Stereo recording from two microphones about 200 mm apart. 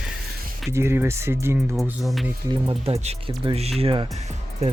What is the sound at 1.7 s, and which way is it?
Speech, centre (ahead or behind).